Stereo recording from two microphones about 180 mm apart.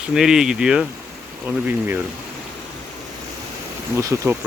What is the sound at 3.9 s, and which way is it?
Speech, 15° right (ahead or behind).